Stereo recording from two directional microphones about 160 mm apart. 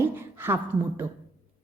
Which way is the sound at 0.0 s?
15° right (ahead or behind).